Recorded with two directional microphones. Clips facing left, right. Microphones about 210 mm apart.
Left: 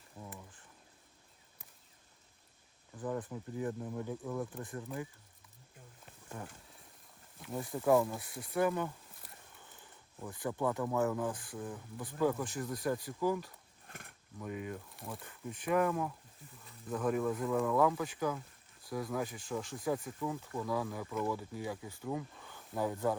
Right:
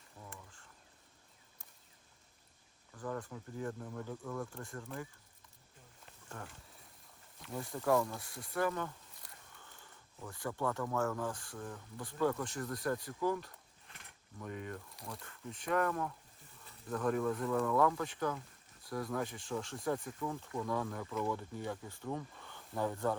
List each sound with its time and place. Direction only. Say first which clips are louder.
2.9 s speech: left 3 dB; 15° left (ahead or behind)
6.3 s speech: left 3 dB; 15° left (ahead or behind)
7.5 s speech: left 3 dB; 5° left (ahead or behind)
8.5 s speech: left 3 dB; 15° left (ahead or behind)
9.2 s a sound: left 2 dB; 5° left (ahead or behind)
10.2 s speech: left 3 dB; 15° left (ahead or behind)
11.9 s speech: left 2 dB; 5° left (ahead or behind)
13.8 s a sound: left 9 dB; 50° left (ahead or behind)
14.3 s speech: left 3 dB; 5° left (ahead or behind)
15.2 s speech: left 3 dB; 15° left (ahead or behind)